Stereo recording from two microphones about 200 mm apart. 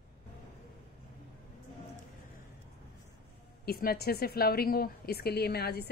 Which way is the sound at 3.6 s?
50° left (ahead or behind).